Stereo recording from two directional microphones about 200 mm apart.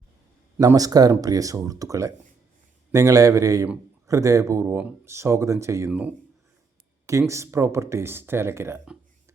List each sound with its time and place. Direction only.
0.6 s speech: 20° right (ahead or behind)